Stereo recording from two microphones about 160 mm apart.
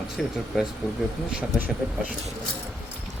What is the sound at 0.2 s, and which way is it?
Speech, centre (ahead or behind).